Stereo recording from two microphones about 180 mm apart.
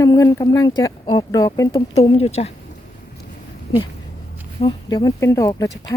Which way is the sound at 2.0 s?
35° left (ahead or behind).